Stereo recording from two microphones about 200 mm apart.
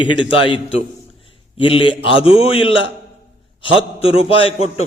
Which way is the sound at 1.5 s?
25° left (ahead or behind).